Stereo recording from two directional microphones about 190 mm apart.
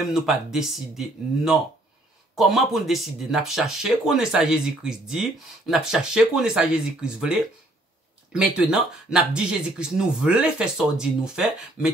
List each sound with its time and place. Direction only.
0.1 s speech: centre (ahead or behind)
8.5 s speech: 5° right (ahead or behind)